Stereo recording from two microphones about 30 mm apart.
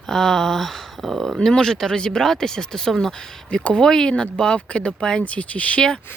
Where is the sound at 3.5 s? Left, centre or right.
Left.